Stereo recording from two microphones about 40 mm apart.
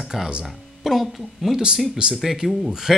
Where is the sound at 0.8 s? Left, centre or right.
Centre.